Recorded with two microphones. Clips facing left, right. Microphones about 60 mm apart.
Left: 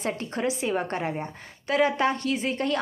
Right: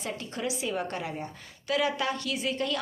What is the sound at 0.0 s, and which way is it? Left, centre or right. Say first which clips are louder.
A woman's voice: left 6 dB; left.